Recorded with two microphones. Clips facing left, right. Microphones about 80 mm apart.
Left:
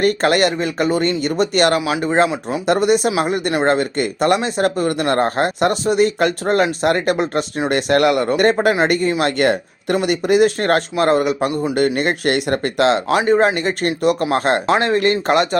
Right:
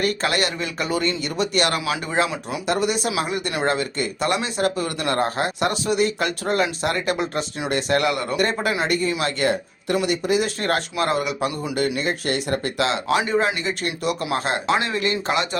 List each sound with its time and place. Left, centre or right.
0.0 s speech: left
1.8 s speech: left
2.6 s speech: left
11.9 s speech: left